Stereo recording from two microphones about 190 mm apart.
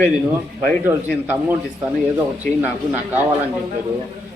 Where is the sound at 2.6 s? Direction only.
10° right (ahead or behind).